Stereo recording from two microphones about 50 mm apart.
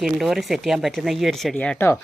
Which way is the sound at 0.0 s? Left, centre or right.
Centre.